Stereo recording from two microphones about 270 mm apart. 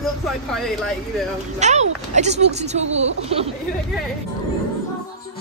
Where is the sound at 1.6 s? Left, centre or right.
Right.